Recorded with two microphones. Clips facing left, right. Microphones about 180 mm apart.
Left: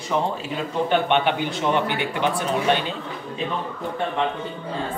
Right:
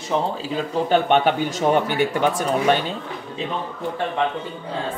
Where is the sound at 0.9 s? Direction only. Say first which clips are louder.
Right 3 dB; 40° right (ahead or behind).